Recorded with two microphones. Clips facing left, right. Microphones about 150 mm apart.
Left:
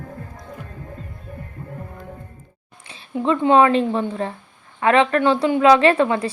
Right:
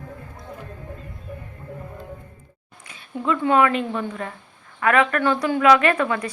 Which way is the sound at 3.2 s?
25° left (ahead or behind).